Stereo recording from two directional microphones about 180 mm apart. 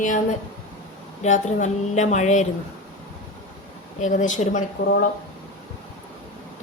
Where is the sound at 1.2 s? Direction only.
40° left (ahead or behind).